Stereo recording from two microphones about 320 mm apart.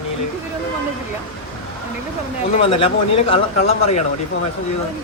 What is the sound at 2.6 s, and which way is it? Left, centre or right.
Speech, centre.